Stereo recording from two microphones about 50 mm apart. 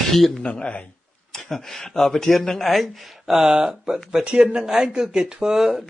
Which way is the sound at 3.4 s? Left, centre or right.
Centre.